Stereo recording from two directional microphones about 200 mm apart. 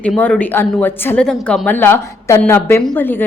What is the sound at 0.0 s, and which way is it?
Speech, 5° left (ahead or behind).